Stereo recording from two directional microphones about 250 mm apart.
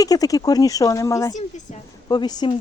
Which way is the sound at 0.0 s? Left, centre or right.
Centre.